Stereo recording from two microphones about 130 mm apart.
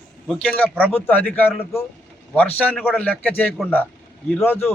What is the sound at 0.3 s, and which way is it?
A man's voice, 5° left (ahead or behind).